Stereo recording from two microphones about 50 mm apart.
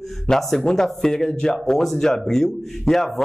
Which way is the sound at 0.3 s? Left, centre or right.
Centre.